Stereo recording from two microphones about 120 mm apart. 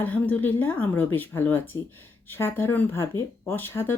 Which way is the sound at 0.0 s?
15° left (ahead or behind).